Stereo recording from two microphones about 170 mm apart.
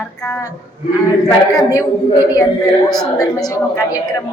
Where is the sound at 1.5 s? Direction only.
20° left (ahead or behind).